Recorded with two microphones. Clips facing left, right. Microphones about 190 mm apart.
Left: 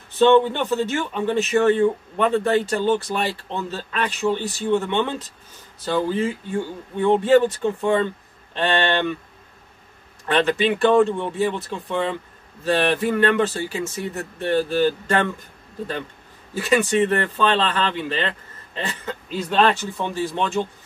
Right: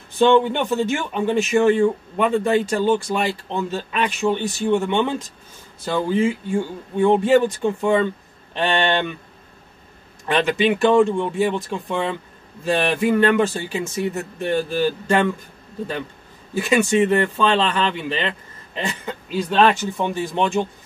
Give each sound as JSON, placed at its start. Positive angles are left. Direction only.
{"t": 0.2, "sound": "speech", "side_deg": -15}
{"t": 10.2, "sound": "speech", "side_deg": -15}
{"t": 16.5, "sound": "speech", "side_deg": -15}